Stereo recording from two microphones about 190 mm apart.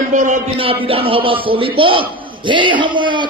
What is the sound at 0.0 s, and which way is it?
Speech, 40° right (ahead or behind).